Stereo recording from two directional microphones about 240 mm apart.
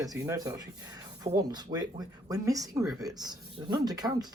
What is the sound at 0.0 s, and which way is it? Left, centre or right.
Speech, centre.